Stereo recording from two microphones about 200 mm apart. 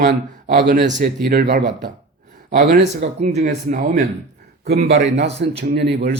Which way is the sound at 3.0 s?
35° right (ahead or behind).